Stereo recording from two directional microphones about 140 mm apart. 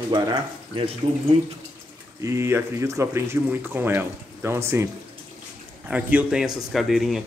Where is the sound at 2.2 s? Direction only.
20° right (ahead or behind).